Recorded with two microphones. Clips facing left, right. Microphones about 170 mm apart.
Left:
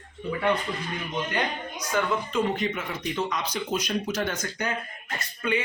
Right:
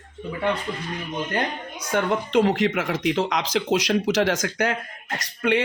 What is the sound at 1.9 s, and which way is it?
Speech, 70° right (ahead or behind).